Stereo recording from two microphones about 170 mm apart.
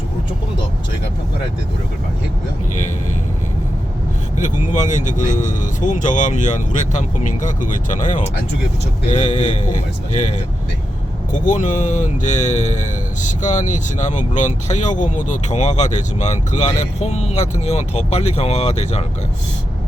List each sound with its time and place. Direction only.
4.4 s speech: 45° left (ahead or behind)